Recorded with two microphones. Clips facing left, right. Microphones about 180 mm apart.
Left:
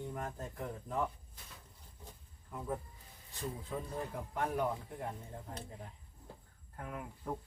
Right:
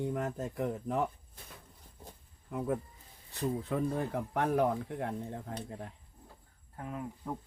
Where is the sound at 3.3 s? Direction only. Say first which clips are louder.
Right 8 dB; 70° right (ahead or behind).